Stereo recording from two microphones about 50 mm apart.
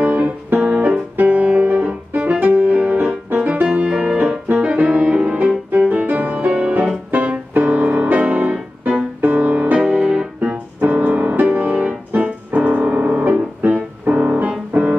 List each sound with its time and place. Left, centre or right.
0.0 s music: right
0.6 s music: centre
1.1 s music: right
7.1 s keyboard: right
7.5 s music: right